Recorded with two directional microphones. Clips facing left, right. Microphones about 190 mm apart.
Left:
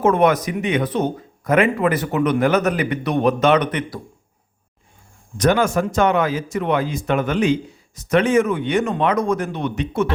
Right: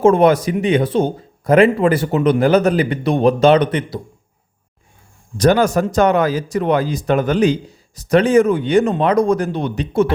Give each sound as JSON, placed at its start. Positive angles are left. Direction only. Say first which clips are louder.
{"t": 0.0, "sound": "speech", "louder": "right 4 dB", "side_deg": -30}
{"t": 5.4, "sound": "speech", "louder": "right 3 dB", "side_deg": -35}